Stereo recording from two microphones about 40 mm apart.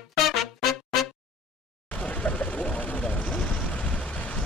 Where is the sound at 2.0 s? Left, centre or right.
Left.